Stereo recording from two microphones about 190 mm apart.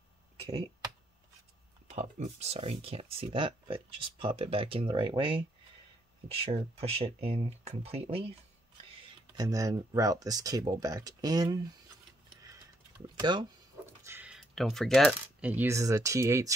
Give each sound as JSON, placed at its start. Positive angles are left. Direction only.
{"t": 1.9, "sound": "speech", "side_deg": -35}
{"t": 6.4, "sound": "speech", "side_deg": -30}
{"t": 9.4, "sound": "speech", "side_deg": -20}
{"t": 13.2, "sound": "speech", "side_deg": -25}
{"t": 14.0, "sound": "coin", "side_deg": -10}
{"t": 15.5, "sound": "speech", "side_deg": -15}